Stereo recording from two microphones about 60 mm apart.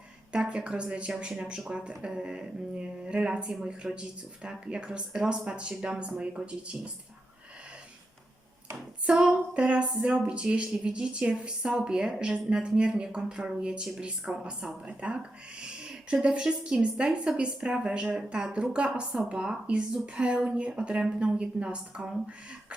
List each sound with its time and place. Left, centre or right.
0.3 s speech: centre
9.0 s speech: centre